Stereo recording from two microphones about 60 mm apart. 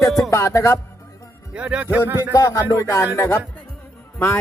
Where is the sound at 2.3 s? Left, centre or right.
Left.